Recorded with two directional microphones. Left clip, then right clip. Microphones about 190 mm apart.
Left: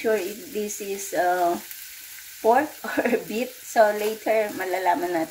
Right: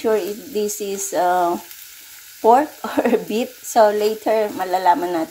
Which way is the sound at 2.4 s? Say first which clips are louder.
Right 6 dB; 30° right (ahead or behind).